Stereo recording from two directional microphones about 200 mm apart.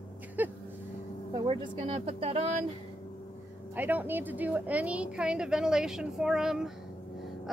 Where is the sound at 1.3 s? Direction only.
20° right (ahead or behind).